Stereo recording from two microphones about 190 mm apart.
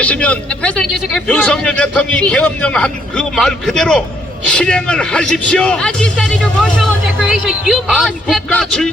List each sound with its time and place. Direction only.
0.0 s a man's voice: 5° left (ahead or behind)